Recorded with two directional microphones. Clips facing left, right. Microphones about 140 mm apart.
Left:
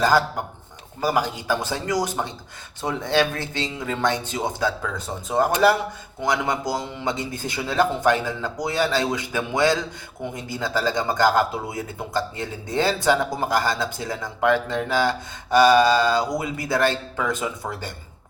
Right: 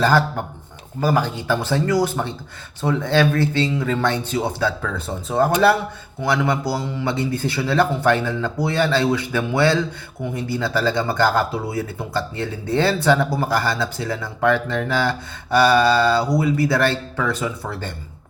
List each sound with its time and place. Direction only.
1.0 s speech: 15° left (ahead or behind)